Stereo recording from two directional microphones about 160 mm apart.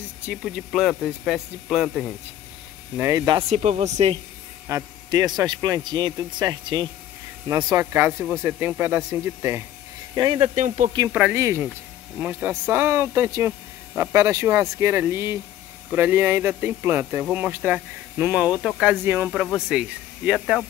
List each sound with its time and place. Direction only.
0.3 s speech: centre (ahead or behind)
3.0 s a man's voice: 20° right (ahead or behind)
3.3 s speech: 40° right (ahead or behind)
4.6 s a man's voice: 20° right (ahead or behind)
10.1 s a man's voice: 30° right (ahead or behind)
10.5 s speech: 50° right (ahead or behind)
11.1 s speech: 10° right (ahead or behind)